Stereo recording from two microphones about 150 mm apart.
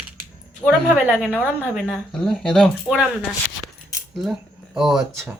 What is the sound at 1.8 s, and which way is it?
Speech, 5° left (ahead or behind).